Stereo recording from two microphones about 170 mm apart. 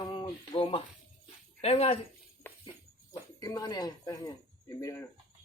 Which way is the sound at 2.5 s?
10° left (ahead or behind).